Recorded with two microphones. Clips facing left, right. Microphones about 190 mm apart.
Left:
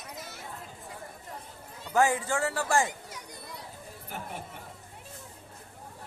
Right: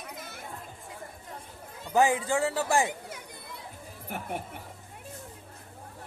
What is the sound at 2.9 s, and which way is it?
Chatter, 55° right (ahead or behind).